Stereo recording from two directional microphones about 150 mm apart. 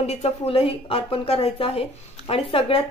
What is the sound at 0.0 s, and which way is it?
Speech, 45° left (ahead or behind).